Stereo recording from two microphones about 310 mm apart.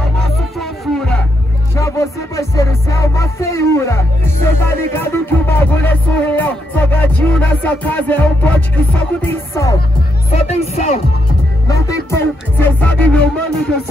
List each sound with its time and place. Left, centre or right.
0.2 s music: centre
10.3 s speech: left
11.6 s music: centre